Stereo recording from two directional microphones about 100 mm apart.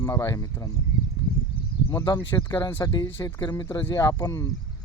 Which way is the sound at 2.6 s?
35° left (ahead or behind).